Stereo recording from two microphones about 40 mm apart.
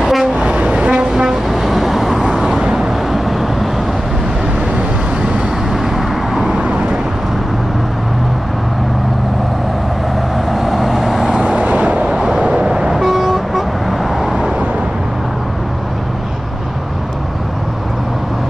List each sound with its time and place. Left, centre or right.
0.0 s vehicle: centre
0.4 s vehicle: right
1.5 s vehicle: centre
2.6 s vehicle: centre
3.1 s vehicle: centre
5.7 s vehicle: centre
6.5 s vehicle: right
10.5 s vehicle: centre
11.4 s vehicle: right
12.9 s vehicle: centre